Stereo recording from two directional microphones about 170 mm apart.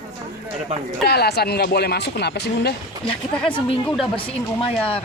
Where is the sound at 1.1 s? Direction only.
70° left (ahead or behind).